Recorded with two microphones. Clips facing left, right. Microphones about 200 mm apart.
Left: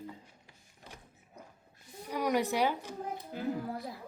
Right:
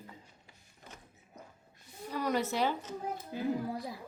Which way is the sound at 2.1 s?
15° left (ahead or behind).